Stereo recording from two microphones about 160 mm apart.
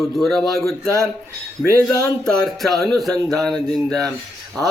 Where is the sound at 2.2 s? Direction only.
5° left (ahead or behind).